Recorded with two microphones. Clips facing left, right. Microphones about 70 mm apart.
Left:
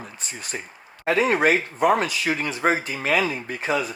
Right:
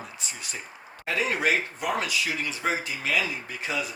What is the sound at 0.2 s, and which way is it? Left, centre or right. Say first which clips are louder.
Speech: left 4 dB; left.